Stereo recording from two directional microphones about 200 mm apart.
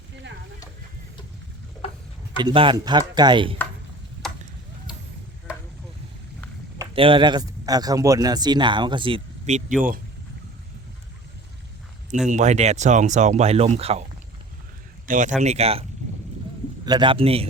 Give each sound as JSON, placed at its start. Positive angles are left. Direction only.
{"t": 2.4, "sound": "a man's voice", "side_deg": -25}
{"t": 4.2, "sound": "chop", "side_deg": 0}
{"t": 6.7, "sound": "speech", "side_deg": -25}
{"t": 12.3, "sound": "speech", "side_deg": -35}
{"t": 15.0, "sound": "a man's voice", "side_deg": -40}